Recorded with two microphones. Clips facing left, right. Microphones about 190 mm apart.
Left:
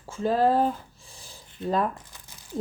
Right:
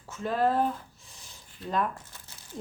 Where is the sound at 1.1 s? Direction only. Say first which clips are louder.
Left 4 dB; 30° left (ahead or behind).